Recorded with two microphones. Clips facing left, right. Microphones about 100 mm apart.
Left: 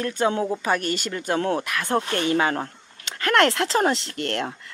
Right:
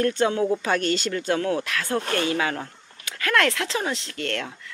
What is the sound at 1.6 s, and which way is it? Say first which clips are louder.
Speech: left 2 dB; 20° left (ahead or behind).